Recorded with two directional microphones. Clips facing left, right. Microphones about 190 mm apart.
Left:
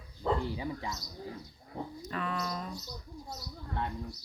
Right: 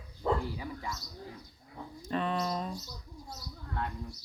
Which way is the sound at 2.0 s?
25° right (ahead or behind).